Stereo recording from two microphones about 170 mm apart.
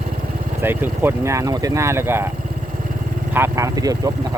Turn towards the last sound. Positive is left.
turn(degrees=-20)  # may be behind; listen again after turning